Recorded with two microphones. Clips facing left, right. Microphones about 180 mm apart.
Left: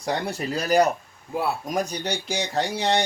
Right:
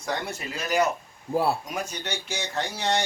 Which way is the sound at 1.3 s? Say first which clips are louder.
Right 2 dB; 35° right (ahead or behind).